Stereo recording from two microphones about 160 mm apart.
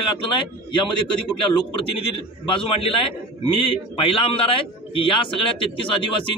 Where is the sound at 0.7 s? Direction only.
30° left (ahead or behind).